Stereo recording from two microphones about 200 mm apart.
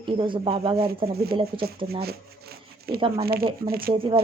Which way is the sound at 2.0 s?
50° right (ahead or behind).